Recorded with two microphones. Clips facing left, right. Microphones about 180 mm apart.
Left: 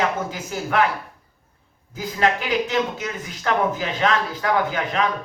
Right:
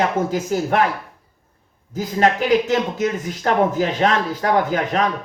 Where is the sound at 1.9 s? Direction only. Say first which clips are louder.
Right 4 dB; 40° right (ahead or behind).